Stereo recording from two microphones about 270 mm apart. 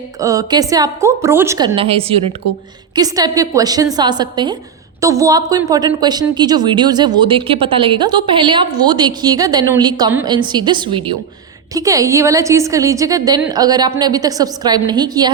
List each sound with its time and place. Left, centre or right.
0.2 s a woman's voice: centre